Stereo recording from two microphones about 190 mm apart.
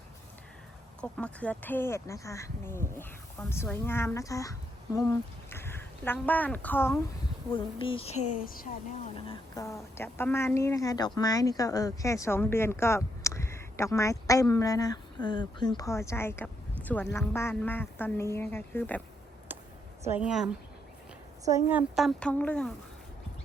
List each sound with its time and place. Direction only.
1.0 s speech: 5° left (ahead or behind)
7.5 s speech: 25° left (ahead or behind); by 8.7 s 45° left (ahead or behind)
9.0 s speech: 30° left (ahead or behind)
9.6 s speech: 15° left (ahead or behind)
19.5 s a sound: 10° right (ahead or behind)
20.1 s a woman's voice: 5° right (ahead or behind)